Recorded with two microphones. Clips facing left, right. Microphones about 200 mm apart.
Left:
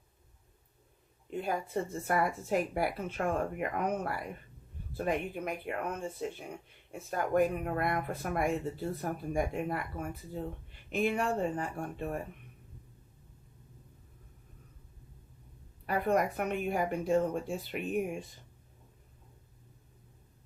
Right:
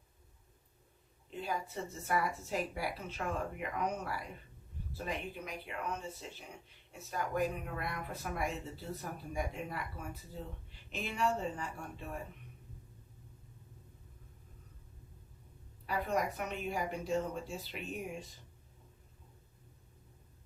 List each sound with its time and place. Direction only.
1.3 s speech: 55° left (ahead or behind)
15.9 s speech: 55° left (ahead or behind)